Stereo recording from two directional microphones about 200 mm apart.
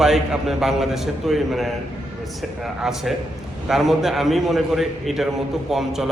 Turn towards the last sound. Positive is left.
turn(degrees=0)  # may be behind; listen again after turning